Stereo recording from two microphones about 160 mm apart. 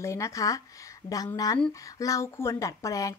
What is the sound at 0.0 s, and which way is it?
Speech, 20° left (ahead or behind).